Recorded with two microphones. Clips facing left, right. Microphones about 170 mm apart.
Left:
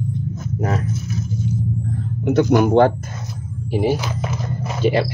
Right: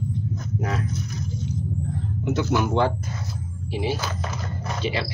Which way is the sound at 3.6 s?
45° left (ahead or behind).